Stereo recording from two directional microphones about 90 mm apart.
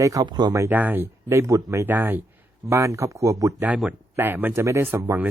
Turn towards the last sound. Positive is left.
turn(degrees=-25)  # may be behind; listen again after turning